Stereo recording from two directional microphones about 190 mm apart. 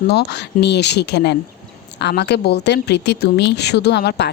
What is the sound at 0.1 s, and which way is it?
A woman's voice, 60° left (ahead or behind).